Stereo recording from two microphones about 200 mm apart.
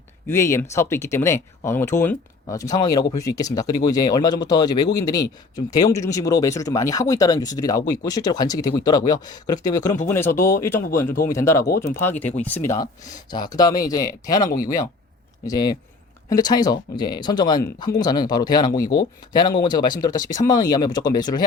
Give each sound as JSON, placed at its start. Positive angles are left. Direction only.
{"t": 0.3, "sound": "speech", "side_deg": 15}
{"t": 15.4, "sound": "speech", "side_deg": 20}